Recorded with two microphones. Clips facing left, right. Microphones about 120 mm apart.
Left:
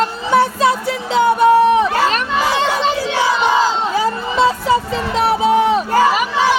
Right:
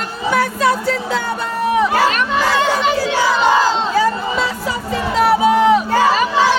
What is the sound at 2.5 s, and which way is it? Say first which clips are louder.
Children playing: right 1 dB; 25° left (ahead or behind).